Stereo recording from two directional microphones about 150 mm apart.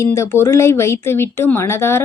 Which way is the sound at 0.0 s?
20° left (ahead or behind).